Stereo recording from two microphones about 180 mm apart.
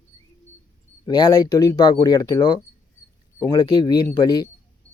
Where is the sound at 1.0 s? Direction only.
25° left (ahead or behind).